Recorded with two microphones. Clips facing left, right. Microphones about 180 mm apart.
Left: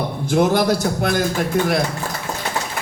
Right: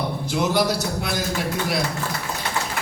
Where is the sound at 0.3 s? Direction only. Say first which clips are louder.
Left 6 dB; 50° left (ahead or behind).